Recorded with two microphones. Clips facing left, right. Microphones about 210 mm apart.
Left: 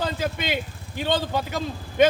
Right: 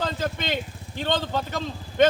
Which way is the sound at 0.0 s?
10° left (ahead or behind).